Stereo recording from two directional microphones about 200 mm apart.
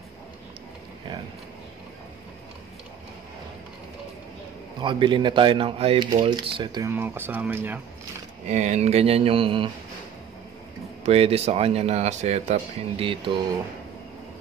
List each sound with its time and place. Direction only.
4.8 s speech: 25° right (ahead or behind)
8.5 s speech: 35° right (ahead or behind)
11.1 s speech: 30° right (ahead or behind)